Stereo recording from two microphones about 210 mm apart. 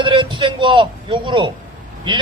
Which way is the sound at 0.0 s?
25° right (ahead or behind).